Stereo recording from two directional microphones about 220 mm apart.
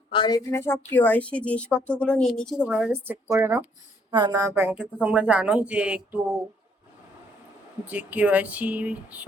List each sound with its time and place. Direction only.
0.1 s a woman's voice: 20° left (ahead or behind); by 6.1 s 5° right (ahead or behind)
7.9 s speech: 5° right (ahead or behind)